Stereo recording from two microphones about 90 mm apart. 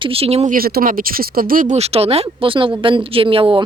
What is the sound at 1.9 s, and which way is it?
A woman's voice, 85° right.